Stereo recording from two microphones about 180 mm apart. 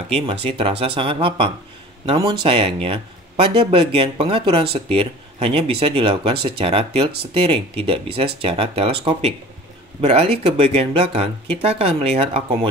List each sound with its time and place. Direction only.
0.1 s speech: 30° right (ahead or behind)